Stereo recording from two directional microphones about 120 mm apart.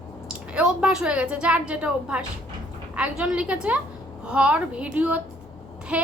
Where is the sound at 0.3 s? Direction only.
5° right (ahead or behind).